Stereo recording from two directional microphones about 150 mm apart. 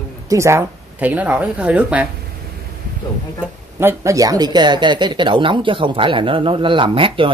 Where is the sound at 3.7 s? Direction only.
20° right (ahead or behind).